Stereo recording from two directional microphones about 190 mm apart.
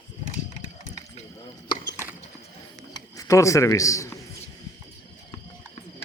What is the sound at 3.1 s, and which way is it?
Speech, 15° left (ahead or behind).